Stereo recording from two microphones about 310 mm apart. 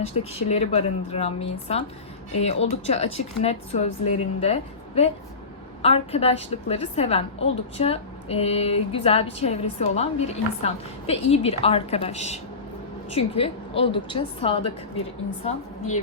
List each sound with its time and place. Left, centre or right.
0.1 s a woman's voice: centre